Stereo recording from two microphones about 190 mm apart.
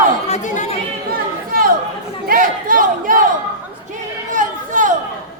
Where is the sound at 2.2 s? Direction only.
45° right (ahead or behind).